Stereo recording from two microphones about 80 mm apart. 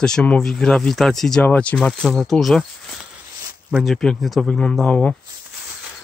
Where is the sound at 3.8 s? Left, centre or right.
Centre.